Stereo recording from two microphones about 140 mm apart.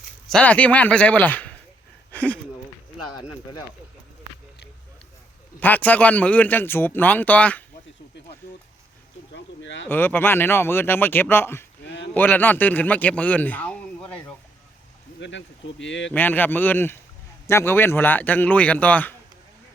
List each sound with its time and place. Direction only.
0.3 s speech: 10° left (ahead or behind)
5.5 s speech: 10° left (ahead or behind)
9.9 s a man's voice: 15° left (ahead or behind)
16.1 s speech: 15° left (ahead or behind)